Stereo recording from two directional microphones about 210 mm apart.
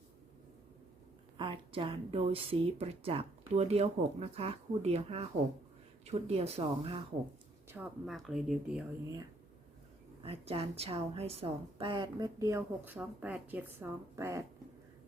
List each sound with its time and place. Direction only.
1.4 s a woman's voice: 25° right (ahead or behind)
7.7 s speech: 5° right (ahead or behind)
10.2 s a woman's voice: 30° right (ahead or behind); by 14.4 s 15° right (ahead or behind)